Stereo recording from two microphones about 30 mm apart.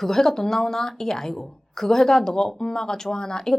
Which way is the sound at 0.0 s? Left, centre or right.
Centre.